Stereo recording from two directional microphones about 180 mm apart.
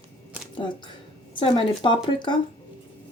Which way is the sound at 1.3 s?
30° left (ahead or behind).